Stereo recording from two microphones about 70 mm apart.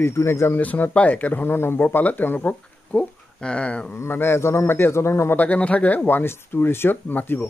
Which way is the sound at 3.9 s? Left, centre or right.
Left.